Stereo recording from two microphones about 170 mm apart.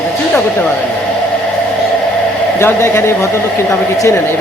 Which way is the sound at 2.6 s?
15° left (ahead or behind).